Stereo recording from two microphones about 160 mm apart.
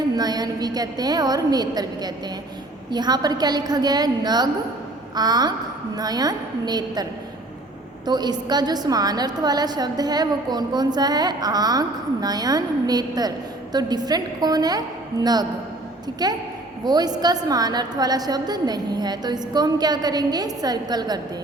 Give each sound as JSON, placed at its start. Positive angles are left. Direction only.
{"t": 0.2, "sound": "a woman's voice", "side_deg": -25}